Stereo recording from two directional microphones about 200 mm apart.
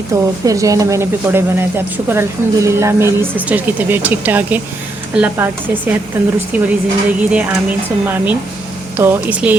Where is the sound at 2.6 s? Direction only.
15° right (ahead or behind).